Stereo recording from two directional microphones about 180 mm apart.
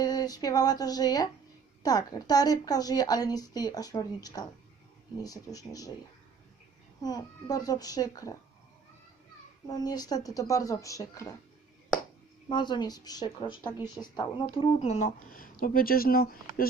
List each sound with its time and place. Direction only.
0.0 s a woman's voice: 20° left (ahead or behind)
7.0 s a woman's voice: 20° left (ahead or behind)
9.6 s a woman's voice: 20° left (ahead or behind)
12.5 s a woman's voice: 25° left (ahead or behind); by 16.6 s 55° left (ahead or behind)